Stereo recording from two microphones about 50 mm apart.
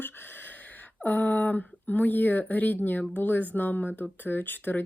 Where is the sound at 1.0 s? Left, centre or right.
Left.